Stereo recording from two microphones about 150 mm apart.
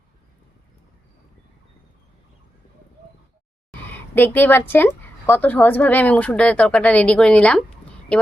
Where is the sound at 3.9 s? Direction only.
15° left (ahead or behind).